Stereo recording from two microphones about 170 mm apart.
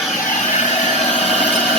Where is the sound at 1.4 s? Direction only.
5° left (ahead or behind).